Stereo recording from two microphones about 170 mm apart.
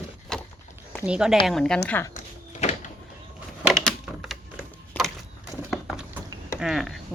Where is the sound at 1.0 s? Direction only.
5° right (ahead or behind).